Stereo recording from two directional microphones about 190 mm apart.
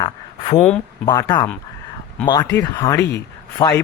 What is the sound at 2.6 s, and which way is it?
Speech, 20° left (ahead or behind).